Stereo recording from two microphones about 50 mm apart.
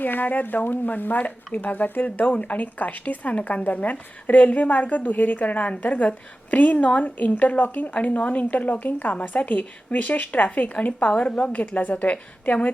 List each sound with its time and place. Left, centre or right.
0.0 s speech: left
11.6 s a woman's voice: left